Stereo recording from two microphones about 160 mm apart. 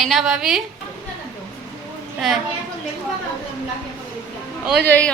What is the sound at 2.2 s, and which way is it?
Speech, centre (ahead or behind).